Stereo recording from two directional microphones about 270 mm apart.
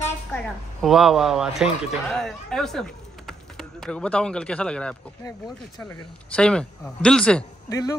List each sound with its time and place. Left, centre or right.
0.0 s a woman's voice: centre
6.3 s speech: centre